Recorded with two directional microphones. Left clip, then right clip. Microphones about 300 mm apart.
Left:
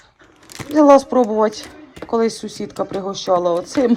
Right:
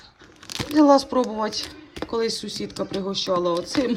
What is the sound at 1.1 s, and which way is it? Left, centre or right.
Speech, left.